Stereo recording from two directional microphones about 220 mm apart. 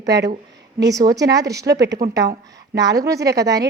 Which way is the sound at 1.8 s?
50° right (ahead or behind).